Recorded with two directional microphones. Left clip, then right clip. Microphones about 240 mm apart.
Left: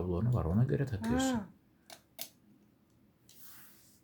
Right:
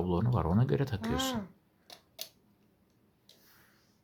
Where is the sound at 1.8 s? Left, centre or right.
Centre.